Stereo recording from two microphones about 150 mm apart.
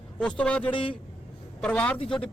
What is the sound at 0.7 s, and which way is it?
Speech, 35° left (ahead or behind).